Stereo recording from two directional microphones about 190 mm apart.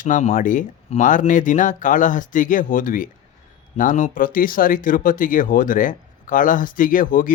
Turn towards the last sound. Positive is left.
turn(degrees=45)  # may be behind; listen again after turning